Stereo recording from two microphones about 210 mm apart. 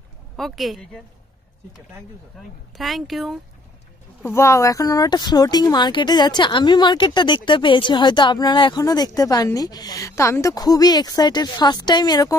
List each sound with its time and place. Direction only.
0.4 s speech: centre (ahead or behind)
2.3 s speech: centre (ahead or behind)
4.2 s speech: 10° left (ahead or behind)